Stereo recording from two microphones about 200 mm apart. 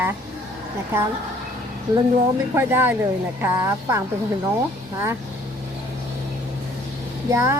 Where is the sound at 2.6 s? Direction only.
10° right (ahead or behind).